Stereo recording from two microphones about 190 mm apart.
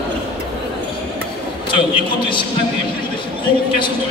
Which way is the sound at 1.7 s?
25° left (ahead or behind).